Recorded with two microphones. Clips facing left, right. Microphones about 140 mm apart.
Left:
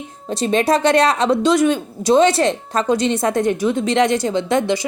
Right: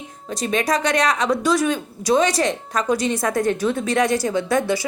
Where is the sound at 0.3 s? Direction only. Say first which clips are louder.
Left 5 dB; 30° left (ahead or behind).